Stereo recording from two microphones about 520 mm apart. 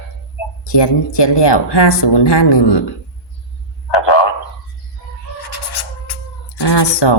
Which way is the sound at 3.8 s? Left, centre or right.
Left.